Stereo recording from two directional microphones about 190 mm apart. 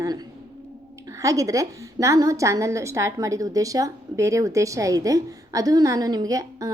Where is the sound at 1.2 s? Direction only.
15° right (ahead or behind).